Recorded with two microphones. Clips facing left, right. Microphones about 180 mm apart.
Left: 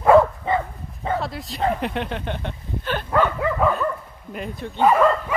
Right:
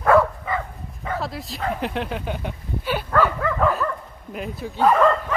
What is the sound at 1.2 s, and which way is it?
Speech, centre (ahead or behind).